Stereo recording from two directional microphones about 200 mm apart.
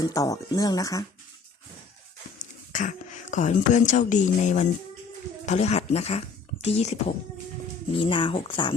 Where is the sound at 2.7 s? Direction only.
40° left (ahead or behind).